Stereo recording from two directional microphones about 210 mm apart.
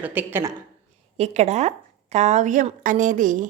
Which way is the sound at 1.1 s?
30° right (ahead or behind).